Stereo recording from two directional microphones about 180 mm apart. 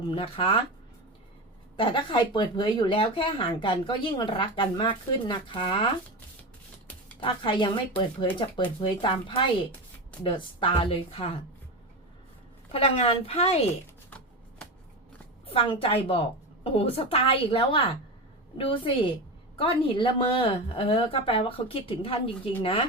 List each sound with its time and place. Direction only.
0.1 s a woman's voice: 30° left (ahead or behind)
1.7 s speech: 25° left (ahead or behind)
7.2 s a woman's voice: 30° left (ahead or behind)
12.7 s a woman's voice: 35° left (ahead or behind)
15.4 s a woman's voice: 30° left (ahead or behind)